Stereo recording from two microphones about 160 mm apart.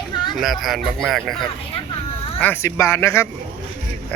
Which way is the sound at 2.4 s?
15° left (ahead or behind).